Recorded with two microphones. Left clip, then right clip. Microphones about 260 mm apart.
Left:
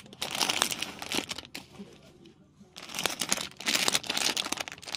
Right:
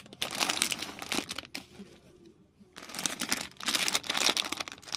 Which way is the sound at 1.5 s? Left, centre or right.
Right.